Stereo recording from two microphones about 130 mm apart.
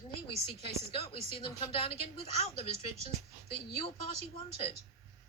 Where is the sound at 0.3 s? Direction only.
45° left (ahead or behind).